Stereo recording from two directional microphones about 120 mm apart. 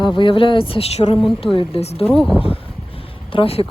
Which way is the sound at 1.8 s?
60° left (ahead or behind).